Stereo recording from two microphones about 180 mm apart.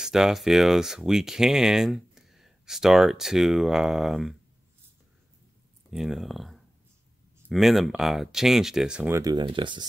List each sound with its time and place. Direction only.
0.0 s speech: 5° right (ahead or behind)
5.9 s speech: centre (ahead or behind)
9.1 s speech: 20° right (ahead or behind)